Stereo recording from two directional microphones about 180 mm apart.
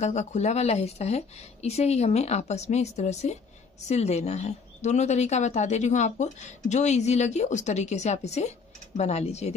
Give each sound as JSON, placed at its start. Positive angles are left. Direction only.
{"t": 0.0, "sound": "speech", "side_deg": 40}